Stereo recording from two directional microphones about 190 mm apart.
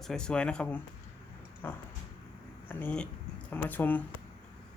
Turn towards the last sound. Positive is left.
turn(degrees=10)  # may be behind; listen again after turning